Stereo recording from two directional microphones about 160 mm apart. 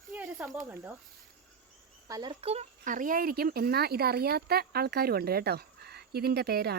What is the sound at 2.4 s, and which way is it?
Speech, 40° right (ahead or behind).